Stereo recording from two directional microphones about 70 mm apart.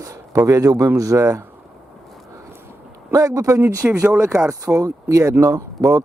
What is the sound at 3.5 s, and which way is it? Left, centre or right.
Speech, right.